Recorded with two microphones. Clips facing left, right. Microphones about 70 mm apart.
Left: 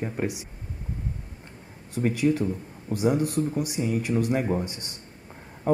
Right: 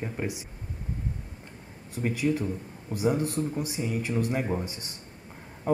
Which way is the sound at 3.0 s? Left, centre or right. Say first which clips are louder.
Left 3 dB; centre.